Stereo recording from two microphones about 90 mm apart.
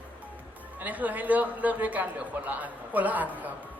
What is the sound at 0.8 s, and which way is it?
Speech, 20° right (ahead or behind).